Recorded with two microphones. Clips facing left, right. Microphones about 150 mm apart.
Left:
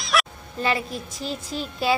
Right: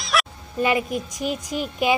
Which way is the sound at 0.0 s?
Centre (ahead or behind).